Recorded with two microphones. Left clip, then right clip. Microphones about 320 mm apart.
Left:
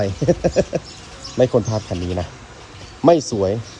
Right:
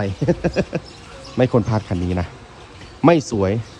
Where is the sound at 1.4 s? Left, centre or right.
Right.